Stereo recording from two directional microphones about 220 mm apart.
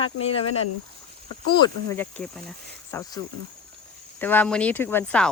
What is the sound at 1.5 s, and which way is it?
Speech, 20° left (ahead or behind).